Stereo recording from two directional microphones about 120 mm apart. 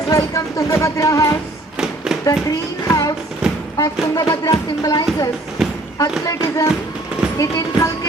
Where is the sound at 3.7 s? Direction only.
35° left (ahead or behind).